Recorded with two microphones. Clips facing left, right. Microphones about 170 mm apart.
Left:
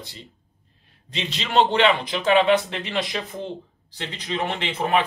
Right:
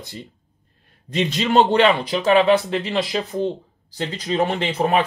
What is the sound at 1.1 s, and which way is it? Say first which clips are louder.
Speech: right 6 dB; 50° right (ahead or behind).